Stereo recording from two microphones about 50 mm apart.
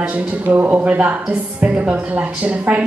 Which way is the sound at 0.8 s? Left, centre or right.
Right.